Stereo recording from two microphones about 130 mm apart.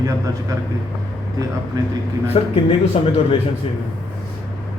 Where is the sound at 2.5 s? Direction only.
45° left (ahead or behind).